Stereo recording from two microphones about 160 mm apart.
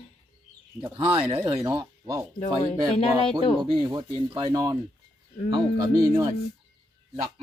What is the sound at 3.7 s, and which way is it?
Speech, 30° right (ahead or behind).